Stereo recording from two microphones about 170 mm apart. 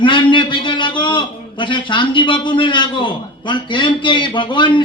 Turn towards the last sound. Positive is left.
turn(degrees=30)  # may be behind; listen again after turning